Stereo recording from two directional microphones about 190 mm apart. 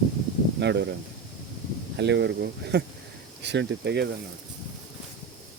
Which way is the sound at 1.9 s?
65° right (ahead or behind).